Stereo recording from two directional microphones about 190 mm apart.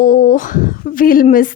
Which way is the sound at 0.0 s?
45° left (ahead or behind).